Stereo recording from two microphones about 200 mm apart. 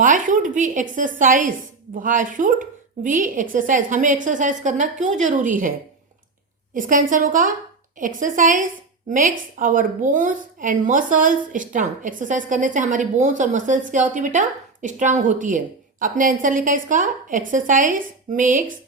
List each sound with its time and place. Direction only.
0.0 s a woman's voice: 40° right (ahead or behind)
6.7 s a woman's voice: 40° right (ahead or behind)